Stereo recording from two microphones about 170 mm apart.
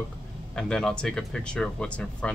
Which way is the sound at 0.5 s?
5° left (ahead or behind).